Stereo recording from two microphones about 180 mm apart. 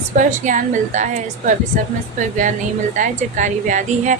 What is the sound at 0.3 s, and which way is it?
Speech, 45° right (ahead or behind).